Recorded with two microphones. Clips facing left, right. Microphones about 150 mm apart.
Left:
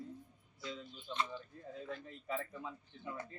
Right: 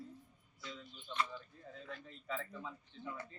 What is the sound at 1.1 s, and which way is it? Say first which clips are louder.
A woman's voice: even; 20° left (ahead or behind).